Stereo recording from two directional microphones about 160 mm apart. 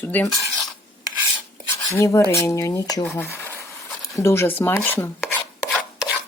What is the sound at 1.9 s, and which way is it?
Speech, 20° left (ahead or behind).